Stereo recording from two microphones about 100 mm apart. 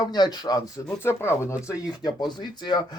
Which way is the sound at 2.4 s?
45° left (ahead or behind).